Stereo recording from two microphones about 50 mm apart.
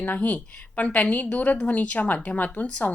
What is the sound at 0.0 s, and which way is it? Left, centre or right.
Speech, left.